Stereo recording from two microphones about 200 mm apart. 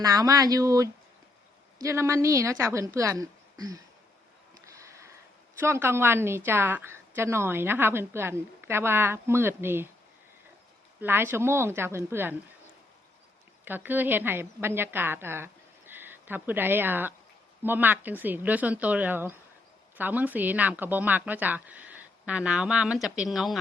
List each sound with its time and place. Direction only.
0.0 s a woman's voice: 20° right (ahead or behind)
4.6 s a sound: 15° right (ahead or behind)
5.5 s a woman's voice: 15° right (ahead or behind)
11.0 s a woman's voice: 10° right (ahead or behind)
13.7 s a woman's voice: 10° right (ahead or behind)